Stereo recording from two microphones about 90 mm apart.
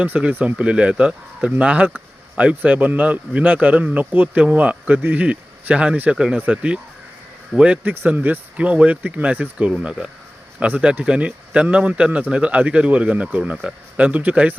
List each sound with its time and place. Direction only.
0.0 s speech: 15° right (ahead or behind)